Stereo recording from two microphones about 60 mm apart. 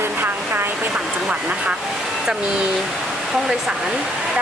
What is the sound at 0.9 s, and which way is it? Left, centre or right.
Vehicle, centre.